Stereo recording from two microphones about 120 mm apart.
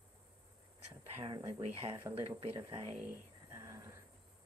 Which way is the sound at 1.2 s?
40° right (ahead or behind).